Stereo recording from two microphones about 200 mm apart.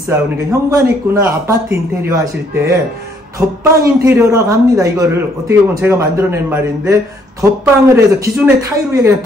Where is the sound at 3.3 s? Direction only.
15° right (ahead or behind).